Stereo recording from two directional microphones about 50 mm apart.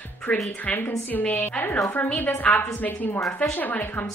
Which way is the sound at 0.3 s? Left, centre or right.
Left.